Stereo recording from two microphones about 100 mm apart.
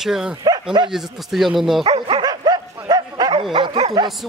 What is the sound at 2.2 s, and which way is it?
Bow-wow, 45° right (ahead or behind).